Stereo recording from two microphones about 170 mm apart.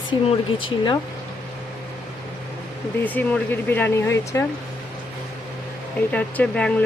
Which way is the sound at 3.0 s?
10° left (ahead or behind).